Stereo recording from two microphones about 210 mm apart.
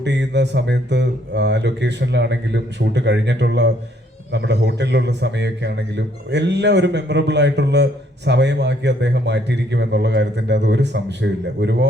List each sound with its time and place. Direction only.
0.0 s a man's voice: 55° right (ahead or behind)